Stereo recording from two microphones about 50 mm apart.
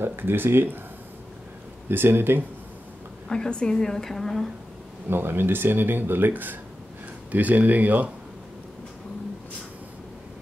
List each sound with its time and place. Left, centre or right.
0.0 s speech: right
1.9 s speech: right
3.3 s a woman's voice: centre
5.1 s speech: right